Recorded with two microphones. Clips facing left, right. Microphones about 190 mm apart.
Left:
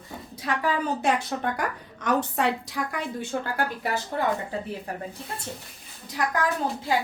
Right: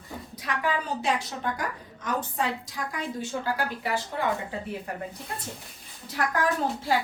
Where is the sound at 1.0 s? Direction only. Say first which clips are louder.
Left 3 dB; 60° left (ahead or behind).